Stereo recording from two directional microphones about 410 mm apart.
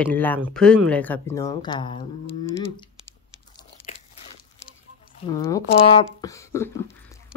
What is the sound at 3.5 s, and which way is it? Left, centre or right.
Crunch, centre.